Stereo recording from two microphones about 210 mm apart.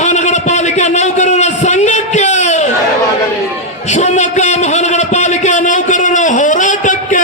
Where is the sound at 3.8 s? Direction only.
35° left (ahead or behind).